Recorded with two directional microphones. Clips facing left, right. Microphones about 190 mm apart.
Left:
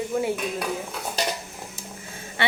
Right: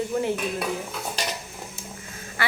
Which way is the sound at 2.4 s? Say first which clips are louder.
Left 3 dB; 25° left (ahead or behind).